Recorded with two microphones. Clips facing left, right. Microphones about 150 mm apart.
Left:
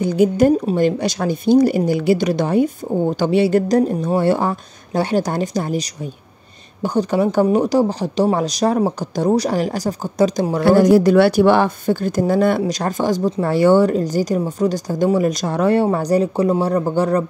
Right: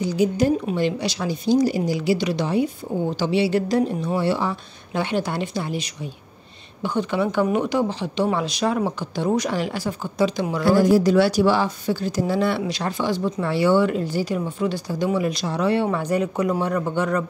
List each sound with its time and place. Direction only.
0.0 s a woman's voice: 55° left (ahead or behind)
10.6 s speech: 65° left (ahead or behind); by 17.2 s 35° left (ahead or behind)